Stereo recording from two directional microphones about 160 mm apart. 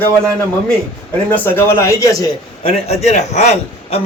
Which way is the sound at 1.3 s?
15° left (ahead or behind).